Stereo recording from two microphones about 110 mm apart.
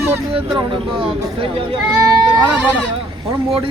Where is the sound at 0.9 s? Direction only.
55° right (ahead or behind).